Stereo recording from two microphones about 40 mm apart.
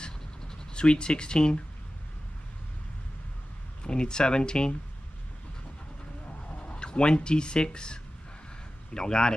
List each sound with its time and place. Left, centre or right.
0.0 s a sound: left
3.8 s speech: left
6.5 s speech: left